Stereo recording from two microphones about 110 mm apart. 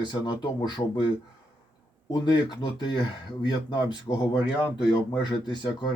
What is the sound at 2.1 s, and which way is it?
Speech, 45° left (ahead or behind).